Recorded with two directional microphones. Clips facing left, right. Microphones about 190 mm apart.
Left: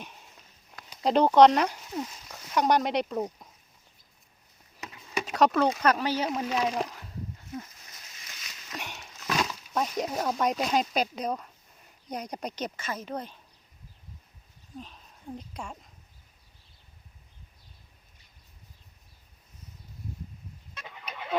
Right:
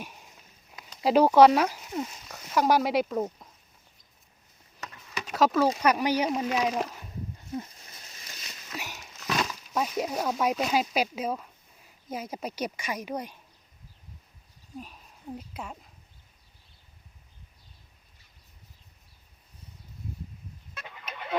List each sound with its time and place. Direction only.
1.0 s speech: 5° right (ahead or behind)
5.3 s speech: centre (ahead or behind)
5.8 s speech: 15° right (ahead or behind)
7.5 s a sound: 30° right (ahead or behind)
8.7 s a sound: 5° right (ahead or behind)
12.0 s speech: 5° right (ahead or behind)
14.8 s speech: 10° right (ahead or behind)